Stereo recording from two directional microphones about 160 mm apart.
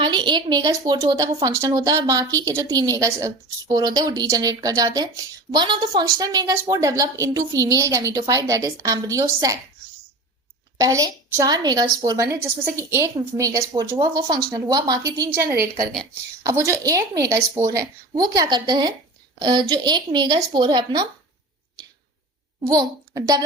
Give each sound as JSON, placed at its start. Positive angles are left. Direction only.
{"t": 0.0, "sound": "a woman's voice", "side_deg": -30}
{"t": 10.8, "sound": "a woman's voice", "side_deg": -20}
{"t": 16.4, "sound": "a woman's voice", "side_deg": -20}
{"t": 22.6, "sound": "a child's voice", "side_deg": -20}